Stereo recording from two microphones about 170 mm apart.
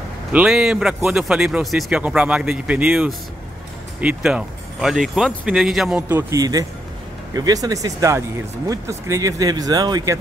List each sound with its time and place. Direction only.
0.3 s speech: 5° right (ahead or behind); by 10.1 s 20° right (ahead or behind)